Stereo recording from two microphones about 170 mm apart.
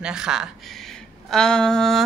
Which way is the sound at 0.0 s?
5° right (ahead or behind).